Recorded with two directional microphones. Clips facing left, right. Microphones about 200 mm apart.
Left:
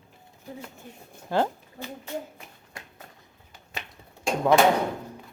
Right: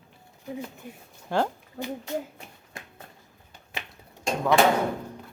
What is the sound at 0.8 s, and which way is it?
Speech, 10° right (ahead or behind).